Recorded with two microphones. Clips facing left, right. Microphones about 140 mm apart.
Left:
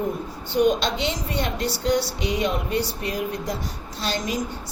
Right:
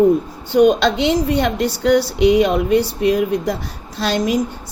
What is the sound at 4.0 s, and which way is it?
Speech, 70° right (ahead or behind).